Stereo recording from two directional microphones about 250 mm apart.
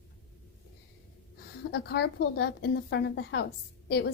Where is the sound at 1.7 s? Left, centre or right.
Left.